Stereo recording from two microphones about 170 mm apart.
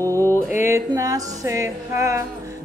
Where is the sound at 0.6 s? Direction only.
15° right (ahead or behind).